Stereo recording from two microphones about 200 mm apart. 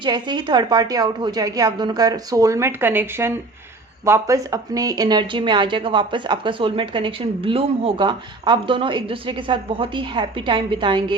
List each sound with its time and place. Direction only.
0.0 s a woman's voice: 20° right (ahead or behind)